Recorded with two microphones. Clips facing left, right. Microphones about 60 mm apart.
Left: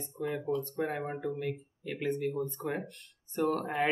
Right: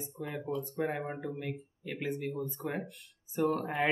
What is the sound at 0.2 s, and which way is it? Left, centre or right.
Speech, centre.